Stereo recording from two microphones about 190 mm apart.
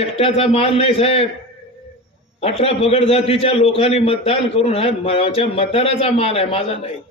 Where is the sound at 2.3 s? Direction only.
30° left (ahead or behind).